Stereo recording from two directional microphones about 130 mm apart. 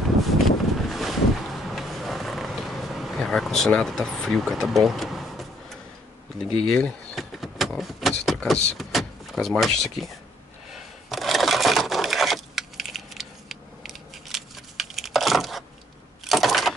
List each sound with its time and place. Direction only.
0.5 s boat: centre (ahead or behind)
6.3 s vehicle: 5° left (ahead or behind)
8.7 s speech: centre (ahead or behind)
10.7 s a sound: centre (ahead or behind)